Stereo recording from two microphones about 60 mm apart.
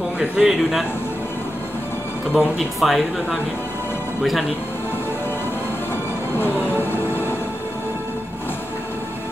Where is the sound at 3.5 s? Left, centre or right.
Left.